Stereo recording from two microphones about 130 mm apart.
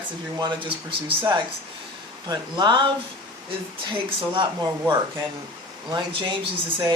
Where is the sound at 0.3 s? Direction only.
35° right (ahead or behind).